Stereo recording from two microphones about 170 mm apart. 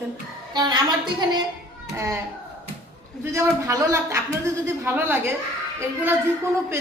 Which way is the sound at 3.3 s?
20° right (ahead or behind).